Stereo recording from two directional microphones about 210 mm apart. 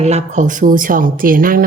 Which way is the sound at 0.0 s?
30° right (ahead or behind).